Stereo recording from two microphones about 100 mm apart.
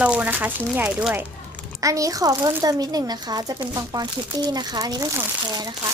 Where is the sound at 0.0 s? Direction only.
10° right (ahead or behind).